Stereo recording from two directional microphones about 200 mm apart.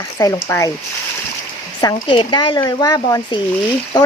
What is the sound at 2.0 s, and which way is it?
Speech, 25° left (ahead or behind).